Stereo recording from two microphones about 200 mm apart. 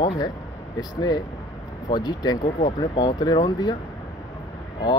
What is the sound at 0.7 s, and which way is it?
Speech, 20° left (ahead or behind).